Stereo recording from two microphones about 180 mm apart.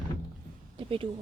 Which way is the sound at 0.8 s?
30° right (ahead or behind).